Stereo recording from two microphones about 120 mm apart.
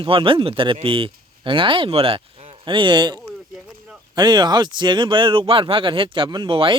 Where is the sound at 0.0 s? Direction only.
50° right (ahead or behind).